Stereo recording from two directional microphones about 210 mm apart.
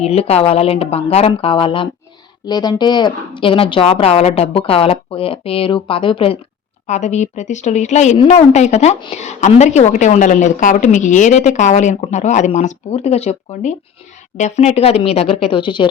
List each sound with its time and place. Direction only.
0.0 s a woman's voice: 30° left (ahead or behind)